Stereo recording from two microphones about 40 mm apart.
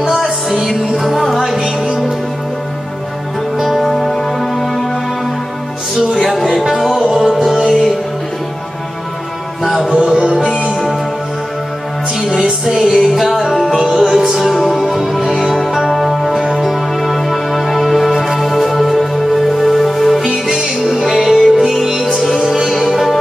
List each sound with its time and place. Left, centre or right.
0.1 s music: centre
3.6 s music: centre
6.1 s music: centre
7.0 s music: centre
7.6 s music: centre
9.6 s music: centre
10.0 s music: centre
12.4 s music: centre
18.1 s music: centre
18.4 s music: centre
20.2 s music: centre